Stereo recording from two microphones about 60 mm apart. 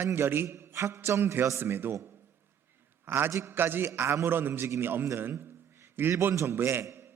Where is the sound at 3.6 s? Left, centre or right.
Right.